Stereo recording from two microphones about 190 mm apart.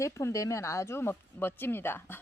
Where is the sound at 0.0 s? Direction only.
15° left (ahead or behind).